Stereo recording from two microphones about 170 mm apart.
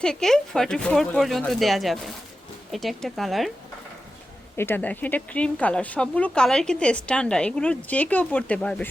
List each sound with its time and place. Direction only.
0.0 s speech: 5° left (ahead or behind)
4.5 s speech: 10° left (ahead or behind)